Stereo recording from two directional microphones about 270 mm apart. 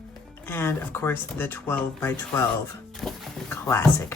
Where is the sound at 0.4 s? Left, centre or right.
Centre.